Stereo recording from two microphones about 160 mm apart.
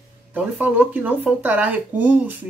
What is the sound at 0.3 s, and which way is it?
Speech, 10° right (ahead or behind).